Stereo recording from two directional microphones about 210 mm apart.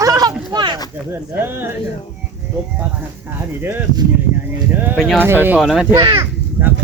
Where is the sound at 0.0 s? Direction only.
15° right (ahead or behind).